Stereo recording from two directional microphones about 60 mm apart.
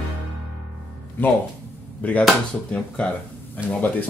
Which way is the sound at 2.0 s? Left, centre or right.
Left.